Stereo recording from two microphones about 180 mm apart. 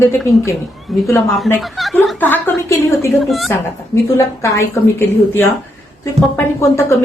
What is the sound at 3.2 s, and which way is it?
Speech, centre (ahead or behind).